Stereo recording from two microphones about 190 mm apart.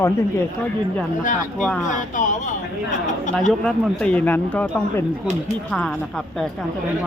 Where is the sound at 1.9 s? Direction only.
40° left (ahead or behind).